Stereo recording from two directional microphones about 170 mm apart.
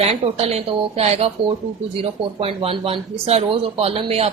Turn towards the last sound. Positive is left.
turn(degrees=-35)  # may be behind; listen again after turning